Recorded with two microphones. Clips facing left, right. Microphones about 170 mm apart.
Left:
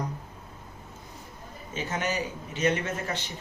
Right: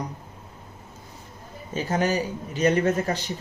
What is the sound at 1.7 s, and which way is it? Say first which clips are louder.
A man's voice: right 6 dB; 35° right (ahead or behind).